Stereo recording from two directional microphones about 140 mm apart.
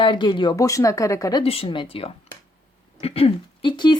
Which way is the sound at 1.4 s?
45° left (ahead or behind).